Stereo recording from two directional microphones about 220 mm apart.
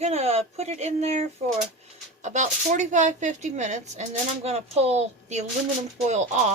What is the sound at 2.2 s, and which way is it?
A woman's voice, 35° right (ahead or behind).